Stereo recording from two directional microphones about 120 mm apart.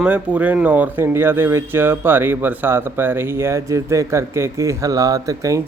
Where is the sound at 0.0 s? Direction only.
10° right (ahead or behind).